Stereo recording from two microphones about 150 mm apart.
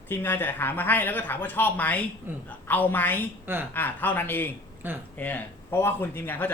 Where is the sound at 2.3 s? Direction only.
15° right (ahead or behind).